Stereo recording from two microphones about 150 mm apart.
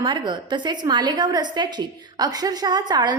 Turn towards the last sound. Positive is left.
turn(degrees=-25)  # may be behind; listen again after turning